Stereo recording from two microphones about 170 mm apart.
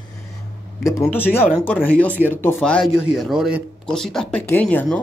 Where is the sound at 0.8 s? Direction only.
15° left (ahead or behind).